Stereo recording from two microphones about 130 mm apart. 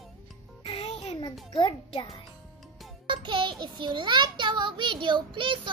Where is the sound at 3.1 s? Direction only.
35° right (ahead or behind).